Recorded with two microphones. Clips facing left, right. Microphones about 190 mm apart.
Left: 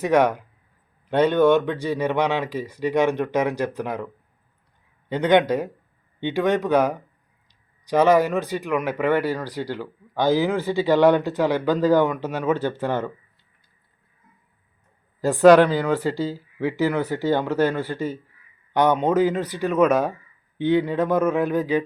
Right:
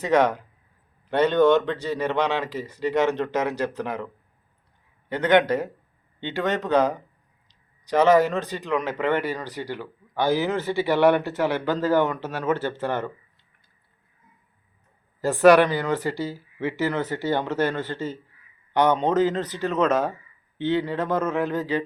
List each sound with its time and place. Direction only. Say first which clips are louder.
0.0 s speech: left 2 dB; 10° left (ahead or behind)
9.6 s speech: left 3 dB; 15° right (ahead or behind)
10.3 s speech: left 3 dB; 15° left (ahead or behind)
15.2 s speech: left 2 dB; 15° left (ahead or behind)
15.5 s speech: left 3 dB; 15° right (ahead or behind)
16.3 s speech: left 3 dB; 15° left (ahead or behind)